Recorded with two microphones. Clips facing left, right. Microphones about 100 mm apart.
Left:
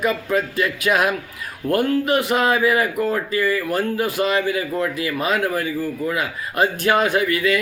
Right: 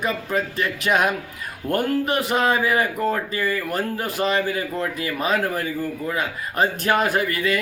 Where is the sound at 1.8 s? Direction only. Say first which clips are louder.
Left 2 dB; 35° right (ahead or behind).